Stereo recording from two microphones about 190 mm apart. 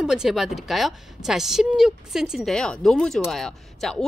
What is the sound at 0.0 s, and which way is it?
Speech, 5° right (ahead or behind).